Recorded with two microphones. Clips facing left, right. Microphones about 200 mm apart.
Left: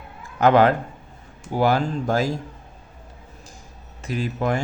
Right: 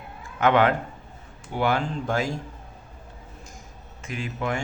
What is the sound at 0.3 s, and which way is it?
Speech, 35° left (ahead or behind).